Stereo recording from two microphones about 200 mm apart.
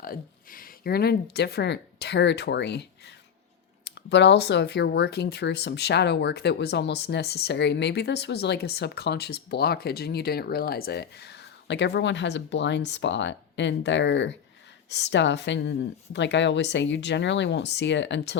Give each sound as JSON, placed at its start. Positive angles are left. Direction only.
{"t": 0.0, "sound": "speech", "side_deg": 45}
{"t": 3.8, "sound": "speech", "side_deg": 60}